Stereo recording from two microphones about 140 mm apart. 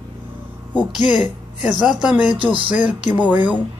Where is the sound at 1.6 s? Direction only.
5° right (ahead or behind).